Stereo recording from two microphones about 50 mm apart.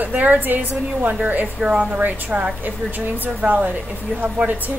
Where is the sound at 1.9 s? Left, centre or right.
Right.